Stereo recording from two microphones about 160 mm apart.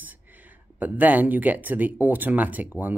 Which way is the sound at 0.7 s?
10° right (ahead or behind).